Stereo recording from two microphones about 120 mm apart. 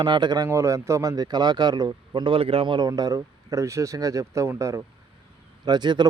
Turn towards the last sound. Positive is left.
turn(degrees=-40)  # may be behind; listen again after turning